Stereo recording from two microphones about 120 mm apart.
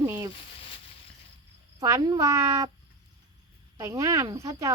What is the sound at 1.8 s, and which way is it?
Speech, 30° right (ahead or behind).